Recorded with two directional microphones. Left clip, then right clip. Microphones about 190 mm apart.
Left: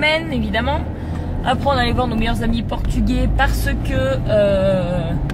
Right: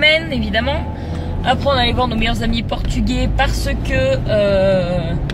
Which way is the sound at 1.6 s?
Centre (ahead or behind).